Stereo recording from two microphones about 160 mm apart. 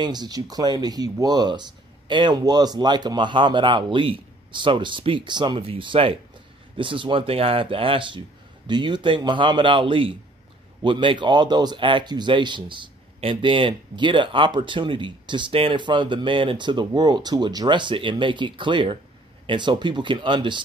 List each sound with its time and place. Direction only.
0.0 s speech: 25° right (ahead or behind)